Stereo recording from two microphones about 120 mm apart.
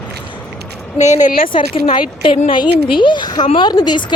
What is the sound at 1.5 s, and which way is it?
Speech, 45° left (ahead or behind).